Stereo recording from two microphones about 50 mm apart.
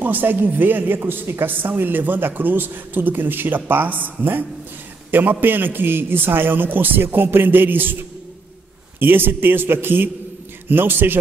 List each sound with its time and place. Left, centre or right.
0.0 s a man's voice: right
9.0 s a man's voice: right